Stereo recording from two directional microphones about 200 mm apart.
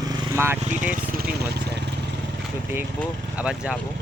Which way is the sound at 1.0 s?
50° right (ahead or behind).